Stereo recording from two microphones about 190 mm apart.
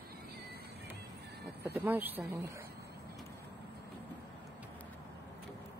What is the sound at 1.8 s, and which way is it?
Speech, 10° right (ahead or behind).